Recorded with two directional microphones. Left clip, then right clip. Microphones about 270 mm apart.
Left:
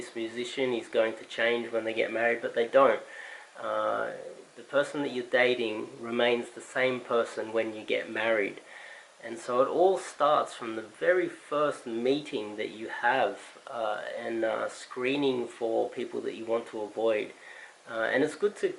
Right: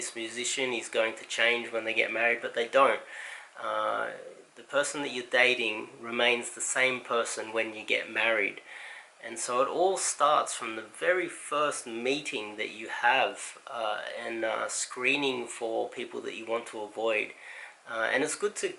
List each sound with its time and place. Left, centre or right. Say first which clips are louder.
0.0 s speech: even; centre
15.6 s speech: left 3 dB; left
16.2 s speech: left 2 dB; centre
16.7 s speech: left 2 dB; left
17.9 s speech: left 1 dB; centre